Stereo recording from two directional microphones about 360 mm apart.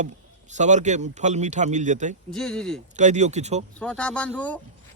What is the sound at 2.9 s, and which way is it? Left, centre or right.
Speech, centre.